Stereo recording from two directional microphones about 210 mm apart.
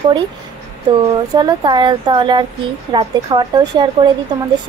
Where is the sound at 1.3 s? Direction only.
20° right (ahead or behind).